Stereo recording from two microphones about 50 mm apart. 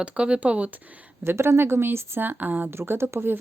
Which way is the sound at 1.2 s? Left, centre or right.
Right.